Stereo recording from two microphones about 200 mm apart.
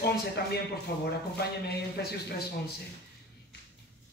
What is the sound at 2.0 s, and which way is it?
Speech, 55° left (ahead or behind).